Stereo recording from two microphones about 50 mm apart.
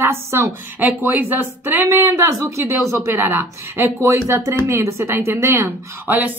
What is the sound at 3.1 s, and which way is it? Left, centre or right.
Speech, right.